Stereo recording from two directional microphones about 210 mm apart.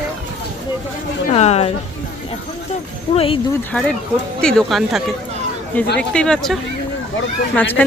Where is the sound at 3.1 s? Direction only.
25° left (ahead or behind).